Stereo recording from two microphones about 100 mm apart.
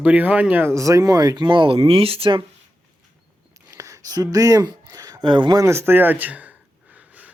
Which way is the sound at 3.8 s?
35° right (ahead or behind).